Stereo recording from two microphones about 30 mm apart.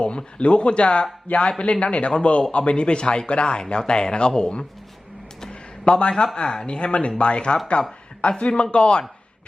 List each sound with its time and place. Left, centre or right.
0.0 s speech: left
5.5 s a sound: left
6.3 s speech: left